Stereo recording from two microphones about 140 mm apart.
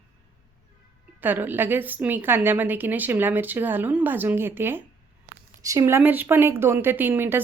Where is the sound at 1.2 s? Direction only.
15° right (ahead or behind).